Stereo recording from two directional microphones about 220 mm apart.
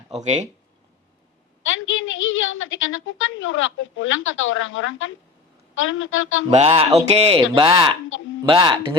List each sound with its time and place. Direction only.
1.6 s a woman's voice: 60° left (ahead or behind)
6.5 s speech: 30° right (ahead or behind)